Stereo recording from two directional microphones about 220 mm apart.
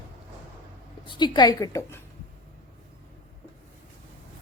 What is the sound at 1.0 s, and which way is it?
A woman's voice, 20° left (ahead or behind).